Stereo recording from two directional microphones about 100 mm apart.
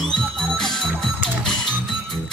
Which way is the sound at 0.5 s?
5° left (ahead or behind).